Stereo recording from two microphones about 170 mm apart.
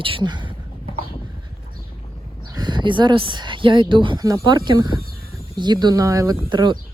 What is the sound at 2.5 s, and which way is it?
Speech, 25° right (ahead or behind).